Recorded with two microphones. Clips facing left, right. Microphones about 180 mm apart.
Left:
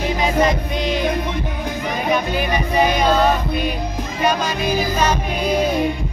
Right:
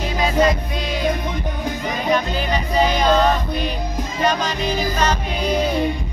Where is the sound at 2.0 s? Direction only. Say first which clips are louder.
Even; 10° left (ahead or behind).